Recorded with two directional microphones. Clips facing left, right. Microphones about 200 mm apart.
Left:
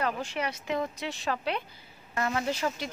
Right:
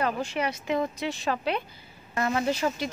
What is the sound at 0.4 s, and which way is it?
Speech, 15° right (ahead or behind).